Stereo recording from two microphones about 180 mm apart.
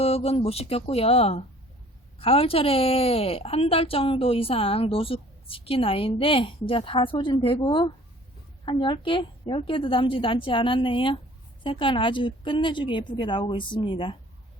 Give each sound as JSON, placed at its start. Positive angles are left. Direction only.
{"t": 0.0, "sound": "a woman's voice", "side_deg": 35}